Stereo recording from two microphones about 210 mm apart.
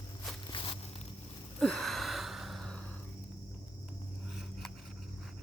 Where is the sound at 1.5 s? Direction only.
Centre (ahead or behind).